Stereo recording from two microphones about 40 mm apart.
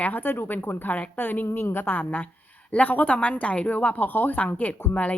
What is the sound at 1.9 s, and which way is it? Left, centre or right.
Speech, left.